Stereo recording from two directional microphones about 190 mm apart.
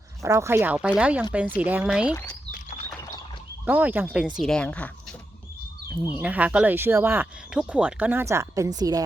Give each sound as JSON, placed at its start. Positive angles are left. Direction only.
{"t": 0.2, "sound": "a woman's voice", "side_deg": -15}
{"t": 2.5, "sound": "a sound", "side_deg": 45}
{"t": 3.7, "sound": "speech", "side_deg": -10}
{"t": 6.1, "sound": "a woman's voice", "side_deg": -5}